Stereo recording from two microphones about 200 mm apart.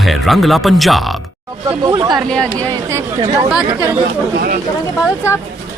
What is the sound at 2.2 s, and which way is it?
Speech, 5° left (ahead or behind).